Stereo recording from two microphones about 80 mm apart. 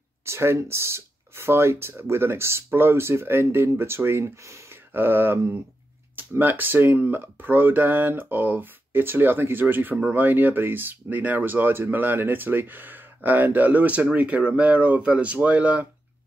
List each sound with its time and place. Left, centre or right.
0.2 s speech: right
4.9 s speech: right